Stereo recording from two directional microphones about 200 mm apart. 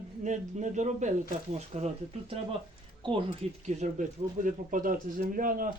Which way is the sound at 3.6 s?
35° right (ahead or behind).